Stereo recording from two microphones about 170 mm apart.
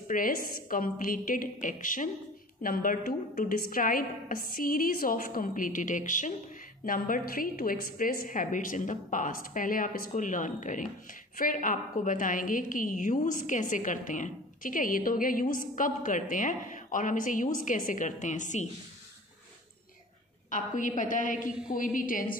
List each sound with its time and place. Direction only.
0.1 s a woman's voice: 50° left (ahead or behind)
20.4 s a woman's voice: 50° left (ahead or behind)